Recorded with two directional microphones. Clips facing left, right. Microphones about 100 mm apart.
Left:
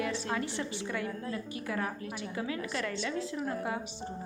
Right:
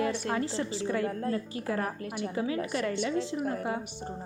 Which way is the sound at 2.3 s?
30° right (ahead or behind).